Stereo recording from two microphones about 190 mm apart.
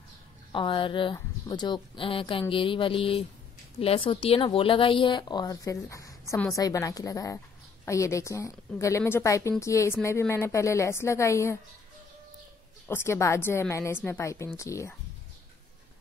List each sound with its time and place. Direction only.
0.5 s speech: 25° left (ahead or behind)
12.8 s speech: 15° left (ahead or behind)